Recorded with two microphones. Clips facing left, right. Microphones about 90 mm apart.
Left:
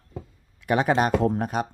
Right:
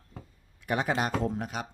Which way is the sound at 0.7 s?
60° left (ahead or behind).